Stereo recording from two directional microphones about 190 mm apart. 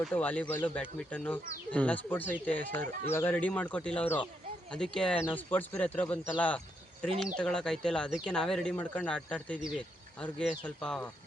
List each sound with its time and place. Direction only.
0.0 s speech: 5° left (ahead or behind)
2.8 s speech: 45° right (ahead or behind)
3.1 s speech: 10° left (ahead or behind)